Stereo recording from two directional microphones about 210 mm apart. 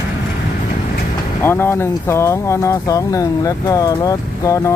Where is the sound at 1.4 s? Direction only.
10° left (ahead or behind).